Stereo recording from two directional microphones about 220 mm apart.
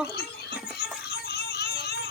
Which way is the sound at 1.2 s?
45° left (ahead or behind).